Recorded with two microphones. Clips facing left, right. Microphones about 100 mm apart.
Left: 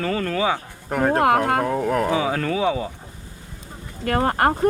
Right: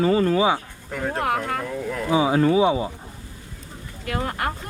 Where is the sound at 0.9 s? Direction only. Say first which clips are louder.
Left 7 dB; 55° left (ahead or behind).